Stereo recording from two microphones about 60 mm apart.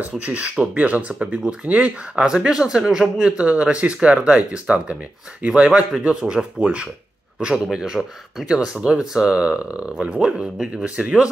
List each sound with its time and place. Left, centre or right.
0.0 s speech: right